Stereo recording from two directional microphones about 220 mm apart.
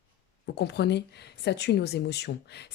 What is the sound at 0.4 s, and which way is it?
Speech, 50° left (ahead or behind).